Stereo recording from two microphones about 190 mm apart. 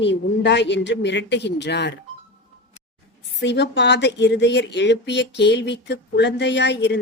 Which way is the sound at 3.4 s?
70° left (ahead or behind).